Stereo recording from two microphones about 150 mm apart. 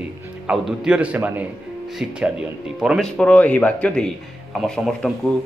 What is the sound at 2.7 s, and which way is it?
A man's voice, centre (ahead or behind).